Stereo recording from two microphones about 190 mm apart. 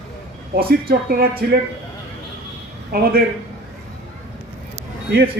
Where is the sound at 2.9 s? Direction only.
55° right (ahead or behind).